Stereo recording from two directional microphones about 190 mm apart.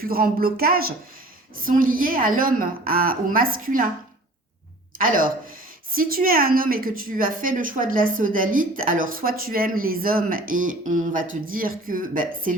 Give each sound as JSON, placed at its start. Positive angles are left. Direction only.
{"t": 0.0, "sound": "a woman's voice", "side_deg": -50}
{"t": 4.9, "sound": "a woman's voice", "side_deg": -45}